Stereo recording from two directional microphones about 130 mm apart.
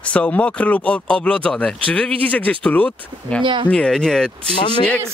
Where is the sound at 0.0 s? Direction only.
10° left (ahead or behind).